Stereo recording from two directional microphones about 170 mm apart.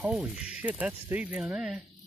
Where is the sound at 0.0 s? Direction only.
5° right (ahead or behind).